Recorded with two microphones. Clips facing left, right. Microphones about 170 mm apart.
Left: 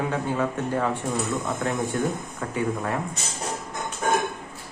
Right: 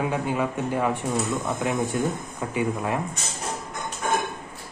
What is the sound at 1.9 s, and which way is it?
Speech, 15° right (ahead or behind).